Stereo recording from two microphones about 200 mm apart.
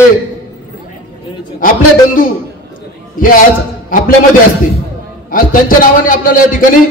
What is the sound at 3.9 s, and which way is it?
Speech, 45° left (ahead or behind).